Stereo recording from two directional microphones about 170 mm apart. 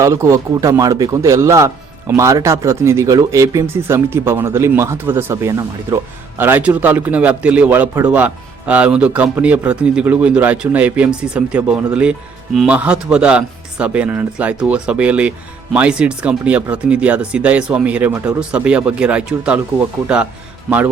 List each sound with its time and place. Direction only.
0.0 s a man's voice: 15° right (ahead or behind)